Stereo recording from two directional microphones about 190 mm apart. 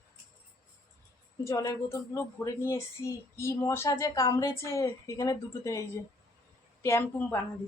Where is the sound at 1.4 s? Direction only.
15° left (ahead or behind).